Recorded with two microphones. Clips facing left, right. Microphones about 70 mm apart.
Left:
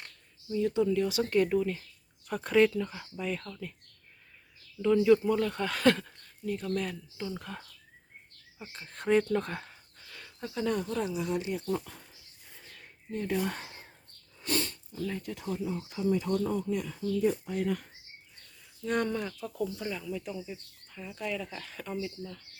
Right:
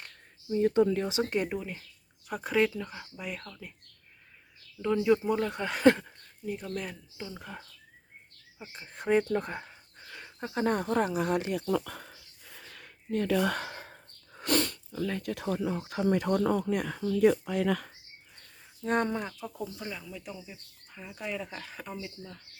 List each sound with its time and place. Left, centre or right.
0.5 s speech: right
1.0 s speech: right
4.8 s speech: centre
10.5 s speech: right
18.8 s speech: right
19.6 s speech: centre
20.9 s speech: centre